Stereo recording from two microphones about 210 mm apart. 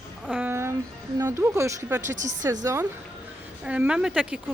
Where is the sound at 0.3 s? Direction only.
10° right (ahead or behind).